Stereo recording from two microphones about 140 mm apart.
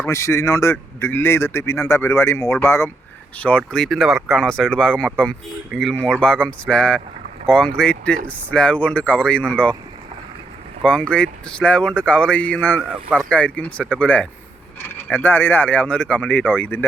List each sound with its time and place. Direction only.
0.0 s a man's voice: 20° left (ahead or behind)
10.8 s speech: 10° left (ahead or behind)